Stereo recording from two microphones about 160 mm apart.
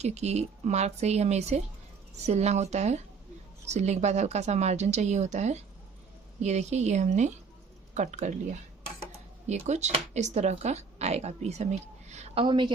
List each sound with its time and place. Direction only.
0.0 s speech: 45° right (ahead or behind)
9.5 s speech: 45° right (ahead or behind); by 12.7 s 30° right (ahead or behind)